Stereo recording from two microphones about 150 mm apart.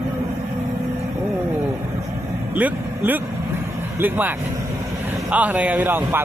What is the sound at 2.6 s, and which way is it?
Speech, 10° right (ahead or behind).